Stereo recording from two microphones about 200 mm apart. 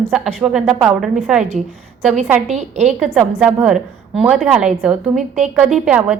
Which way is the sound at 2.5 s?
35° right (ahead or behind).